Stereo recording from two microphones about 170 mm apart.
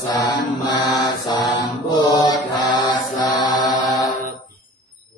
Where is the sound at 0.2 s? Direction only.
25° left (ahead or behind).